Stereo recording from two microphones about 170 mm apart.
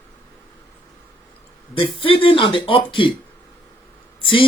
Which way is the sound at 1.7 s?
30° left (ahead or behind).